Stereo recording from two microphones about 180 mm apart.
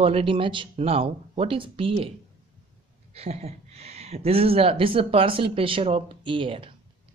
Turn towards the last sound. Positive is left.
turn(degrees=-30)  # may be behind; listen again after turning